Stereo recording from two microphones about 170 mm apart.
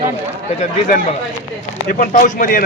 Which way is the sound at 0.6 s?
45° left (ahead or behind).